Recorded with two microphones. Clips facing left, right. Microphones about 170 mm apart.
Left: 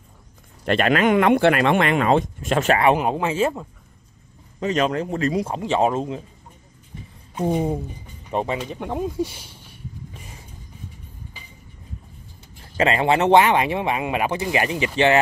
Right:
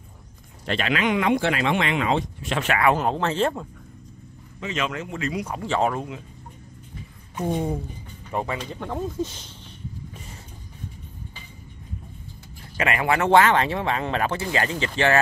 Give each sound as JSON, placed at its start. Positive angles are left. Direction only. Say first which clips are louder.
{"t": 0.7, "sound": "speech", "louder": "left 6 dB", "side_deg": 50}
{"t": 3.0, "sound": "speech", "louder": "left 2 dB", "side_deg": 10}
{"t": 4.6, "sound": "speech", "louder": "left 7 dB", "side_deg": 40}
{"t": 8.3, "sound": "speech", "louder": "left 4 dB", "side_deg": 20}
{"t": 12.7, "sound": "speech", "louder": "left 4 dB", "side_deg": 25}